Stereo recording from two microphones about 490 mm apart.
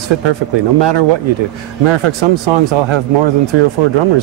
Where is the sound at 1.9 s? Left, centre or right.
Right.